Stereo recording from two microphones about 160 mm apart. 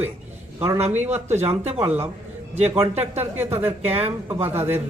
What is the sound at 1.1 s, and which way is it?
Speech, 45° right (ahead or behind).